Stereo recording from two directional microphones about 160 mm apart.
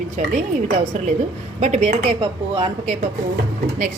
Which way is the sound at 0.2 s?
50° right (ahead or behind).